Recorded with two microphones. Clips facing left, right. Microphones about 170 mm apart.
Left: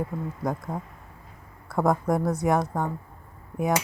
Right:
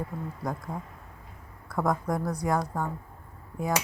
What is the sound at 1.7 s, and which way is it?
Cutlery, 25° left (ahead or behind).